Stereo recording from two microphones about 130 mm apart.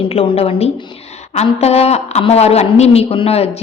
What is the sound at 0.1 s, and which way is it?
A woman's voice, 50° left (ahead or behind).